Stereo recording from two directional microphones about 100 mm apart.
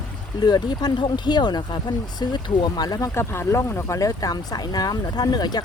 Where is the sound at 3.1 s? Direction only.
25° left (ahead or behind); by 5.6 s 45° left (ahead or behind).